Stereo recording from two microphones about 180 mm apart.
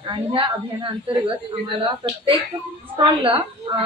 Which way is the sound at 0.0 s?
30° right (ahead or behind).